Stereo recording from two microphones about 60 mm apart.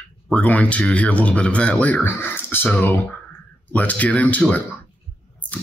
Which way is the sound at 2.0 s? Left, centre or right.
Left.